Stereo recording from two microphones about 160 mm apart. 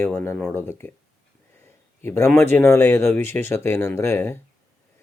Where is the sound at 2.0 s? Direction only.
15° left (ahead or behind).